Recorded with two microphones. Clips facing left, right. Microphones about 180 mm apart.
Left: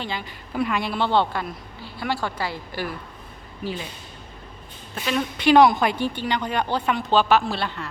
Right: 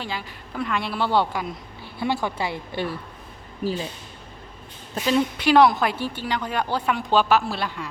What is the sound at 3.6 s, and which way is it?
Speech, 40° right (ahead or behind).